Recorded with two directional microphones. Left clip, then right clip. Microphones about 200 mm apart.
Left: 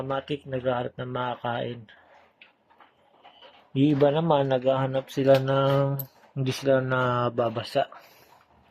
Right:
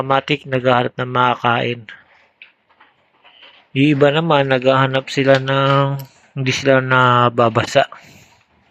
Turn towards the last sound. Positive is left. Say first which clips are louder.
# right 12 dB
turn(degrees=-25)  # may be behind; listen again after turning